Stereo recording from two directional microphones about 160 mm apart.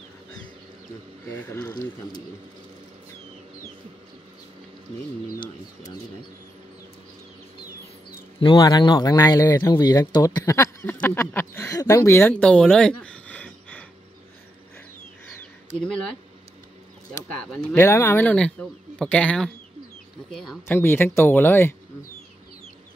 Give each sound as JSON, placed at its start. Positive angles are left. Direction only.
{"t": 1.3, "sound": "speech", "side_deg": 15}
{"t": 8.4, "sound": "speech", "side_deg": 30}
{"t": 17.4, "sound": "speech", "side_deg": 15}
{"t": 20.6, "sound": "speech", "side_deg": 15}